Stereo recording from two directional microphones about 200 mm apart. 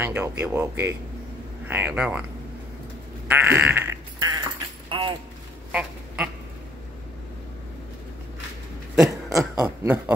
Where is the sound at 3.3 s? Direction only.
10° right (ahead or behind).